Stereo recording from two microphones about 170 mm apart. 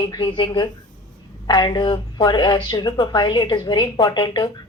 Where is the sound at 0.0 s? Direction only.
30° left (ahead or behind).